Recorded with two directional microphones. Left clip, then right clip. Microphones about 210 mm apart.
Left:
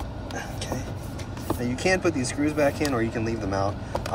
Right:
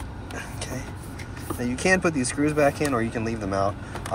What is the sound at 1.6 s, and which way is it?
Speech, 5° left (ahead or behind).